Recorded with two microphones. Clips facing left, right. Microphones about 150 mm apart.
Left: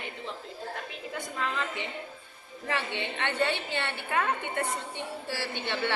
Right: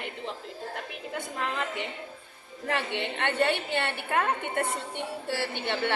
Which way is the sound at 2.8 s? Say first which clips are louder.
Right 2 dB; 55° right (ahead or behind).